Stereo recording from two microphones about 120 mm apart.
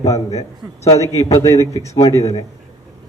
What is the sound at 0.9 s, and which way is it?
A man's voice, 25° left (ahead or behind).